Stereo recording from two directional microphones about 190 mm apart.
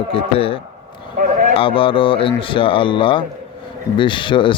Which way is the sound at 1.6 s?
30° left (ahead or behind).